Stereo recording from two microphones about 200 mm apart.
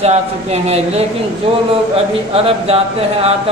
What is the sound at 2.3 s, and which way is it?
Speech, 30° right (ahead or behind).